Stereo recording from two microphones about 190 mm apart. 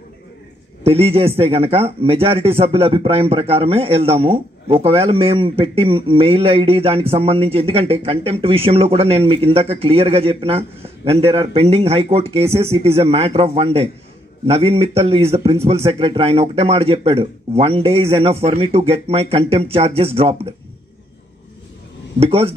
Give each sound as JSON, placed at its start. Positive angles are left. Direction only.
{"t": 0.8, "sound": "speech", "side_deg": -30}
{"t": 22.2, "sound": "speech", "side_deg": -30}